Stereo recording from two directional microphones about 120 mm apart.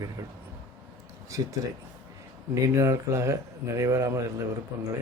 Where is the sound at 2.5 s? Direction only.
25° right (ahead or behind).